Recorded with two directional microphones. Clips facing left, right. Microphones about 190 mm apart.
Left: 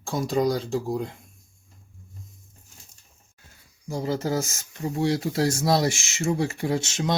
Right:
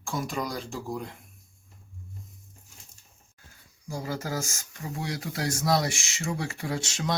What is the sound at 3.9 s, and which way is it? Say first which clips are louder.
Speech: left 6 dB; 25° left (ahead or behind).